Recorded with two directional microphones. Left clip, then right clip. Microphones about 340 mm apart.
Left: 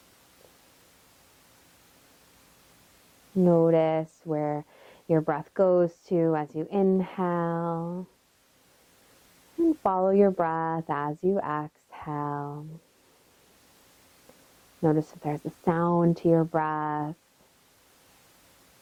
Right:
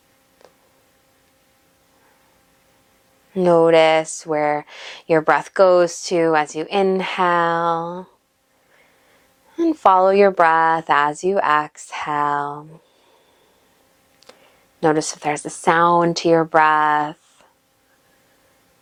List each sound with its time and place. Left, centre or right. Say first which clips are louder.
3.3 s speech: right 9 dB; centre
9.6 s speech: right 10 dB; centre
14.8 s speech: right 8 dB; centre